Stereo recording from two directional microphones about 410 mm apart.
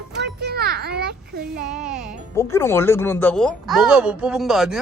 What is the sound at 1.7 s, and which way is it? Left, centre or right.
Speech, centre.